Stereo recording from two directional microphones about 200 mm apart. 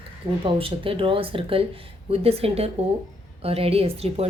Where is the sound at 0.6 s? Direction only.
25° right (ahead or behind).